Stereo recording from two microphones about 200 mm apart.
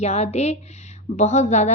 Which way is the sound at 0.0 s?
35° left (ahead or behind).